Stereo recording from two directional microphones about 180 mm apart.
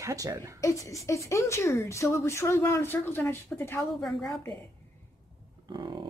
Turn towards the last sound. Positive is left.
turn(degrees=-25)  # may be behind; listen again after turning